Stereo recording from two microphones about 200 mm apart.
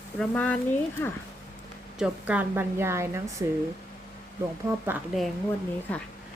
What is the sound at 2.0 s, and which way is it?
A woman's voice, 5° right (ahead or behind).